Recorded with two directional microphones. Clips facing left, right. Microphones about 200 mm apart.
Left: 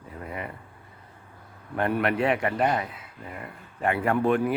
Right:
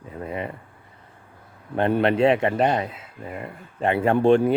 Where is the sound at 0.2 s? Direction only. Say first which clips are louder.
Right 6 dB; 25° right (ahead or behind).